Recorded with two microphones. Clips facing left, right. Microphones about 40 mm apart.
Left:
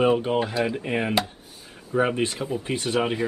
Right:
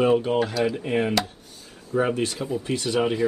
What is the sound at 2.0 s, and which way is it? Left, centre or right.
Speech, left.